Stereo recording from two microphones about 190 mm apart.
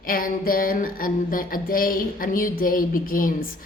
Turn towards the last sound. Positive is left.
turn(degrees=50)  # may be behind; listen again after turning